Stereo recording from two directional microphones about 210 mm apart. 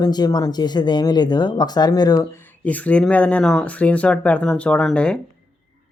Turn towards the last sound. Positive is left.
turn(degrees=5)  # may be behind; listen again after turning